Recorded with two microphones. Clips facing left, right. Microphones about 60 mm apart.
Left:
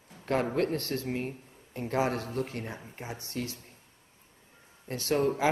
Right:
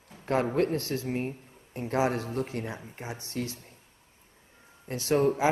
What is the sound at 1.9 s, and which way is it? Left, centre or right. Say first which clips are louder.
Speech: right 2 dB; right.